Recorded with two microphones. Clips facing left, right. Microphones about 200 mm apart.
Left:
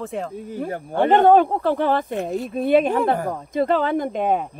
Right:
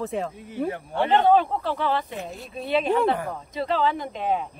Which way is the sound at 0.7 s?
45° left (ahead or behind).